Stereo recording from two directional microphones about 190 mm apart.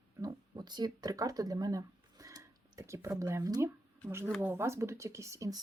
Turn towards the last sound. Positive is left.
turn(degrees=-15)  # may be behind; listen again after turning